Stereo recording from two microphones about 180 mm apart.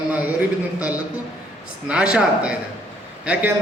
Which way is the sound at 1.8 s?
5° right (ahead or behind).